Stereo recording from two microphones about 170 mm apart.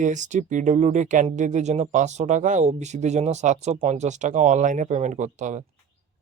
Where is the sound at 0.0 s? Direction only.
45° right (ahead or behind).